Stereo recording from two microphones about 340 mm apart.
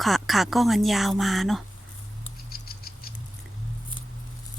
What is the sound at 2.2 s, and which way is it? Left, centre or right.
Rodents, left.